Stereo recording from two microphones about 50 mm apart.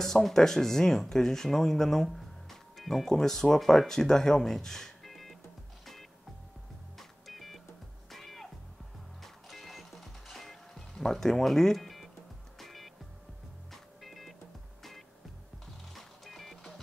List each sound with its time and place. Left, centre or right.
0.0 s speech: centre
7.0 s music: centre